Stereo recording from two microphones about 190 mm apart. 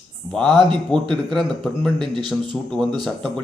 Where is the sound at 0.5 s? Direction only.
25° right (ahead or behind).